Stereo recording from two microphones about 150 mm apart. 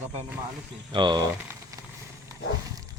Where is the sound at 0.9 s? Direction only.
30° right (ahead or behind).